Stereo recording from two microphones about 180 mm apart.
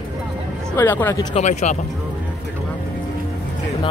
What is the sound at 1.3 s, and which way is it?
Speech, 40° left (ahead or behind).